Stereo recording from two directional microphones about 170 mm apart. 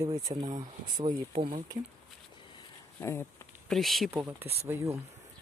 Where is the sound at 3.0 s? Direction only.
15° left (ahead or behind).